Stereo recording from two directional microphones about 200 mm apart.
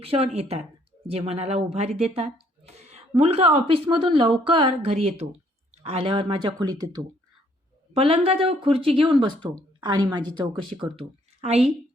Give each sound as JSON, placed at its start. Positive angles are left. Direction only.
{"t": 0.0, "sound": "a woman's voice", "side_deg": -30}